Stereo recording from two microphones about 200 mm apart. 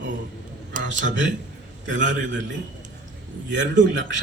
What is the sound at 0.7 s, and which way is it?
Speech, 40° right (ahead or behind).